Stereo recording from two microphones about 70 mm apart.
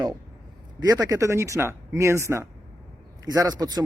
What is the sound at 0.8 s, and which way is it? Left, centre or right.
A woman's voice, right.